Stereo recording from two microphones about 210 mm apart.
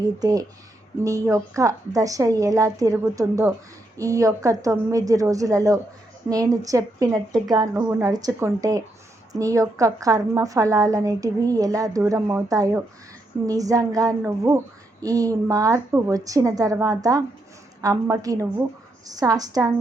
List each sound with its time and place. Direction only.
0.2 s a woman's voice: 15° right (ahead or behind)